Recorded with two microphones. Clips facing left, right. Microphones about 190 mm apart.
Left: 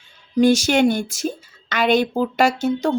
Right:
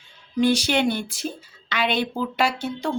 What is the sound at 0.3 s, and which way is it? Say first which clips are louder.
A woman's voice: left 5 dB; 45° left (ahead or behind).